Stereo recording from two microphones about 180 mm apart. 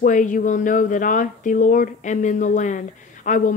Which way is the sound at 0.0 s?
45° left (ahead or behind).